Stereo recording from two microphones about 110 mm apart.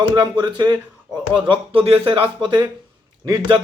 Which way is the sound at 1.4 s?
55° right (ahead or behind).